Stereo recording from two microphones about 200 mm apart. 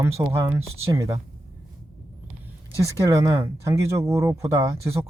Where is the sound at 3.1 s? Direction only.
15° right (ahead or behind).